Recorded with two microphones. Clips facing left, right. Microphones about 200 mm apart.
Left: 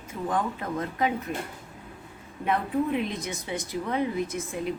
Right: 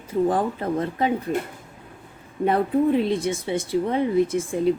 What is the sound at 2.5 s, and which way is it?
Speech, 35° right (ahead or behind).